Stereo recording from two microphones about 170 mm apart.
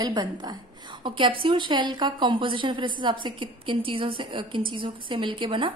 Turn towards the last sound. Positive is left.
turn(degrees=-30)  # may be behind; listen again after turning